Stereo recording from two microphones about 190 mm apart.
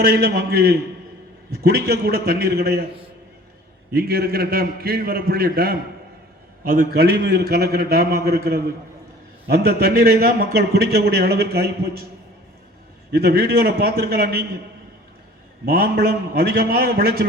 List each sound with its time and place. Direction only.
0.0 s a man's voice: 55° right (ahead or behind)
3.9 s a man's voice: 55° right (ahead or behind)
13.1 s a man's voice: 55° right (ahead or behind)
15.6 s a man's voice: 50° right (ahead or behind)